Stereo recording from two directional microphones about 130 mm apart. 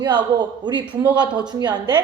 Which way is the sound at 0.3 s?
35° right (ahead or behind).